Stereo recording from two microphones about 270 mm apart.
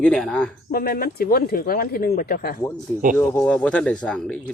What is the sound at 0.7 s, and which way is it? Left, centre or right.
Speech, left.